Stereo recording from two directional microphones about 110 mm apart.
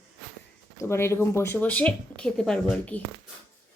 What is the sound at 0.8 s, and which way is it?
A woman's voice, 25° left (ahead or behind).